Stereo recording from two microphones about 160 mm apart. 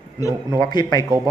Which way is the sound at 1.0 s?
20° right (ahead or behind).